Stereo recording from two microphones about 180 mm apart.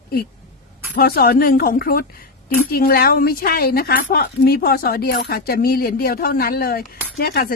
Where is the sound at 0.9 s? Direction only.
60° left (ahead or behind).